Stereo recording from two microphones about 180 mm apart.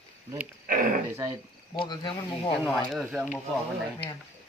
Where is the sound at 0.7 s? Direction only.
50° right (ahead or behind).